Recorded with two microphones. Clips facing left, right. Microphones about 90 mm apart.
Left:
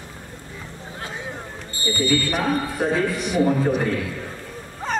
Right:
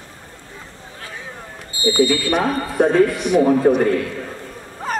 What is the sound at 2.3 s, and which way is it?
Speech, 45° right (ahead or behind).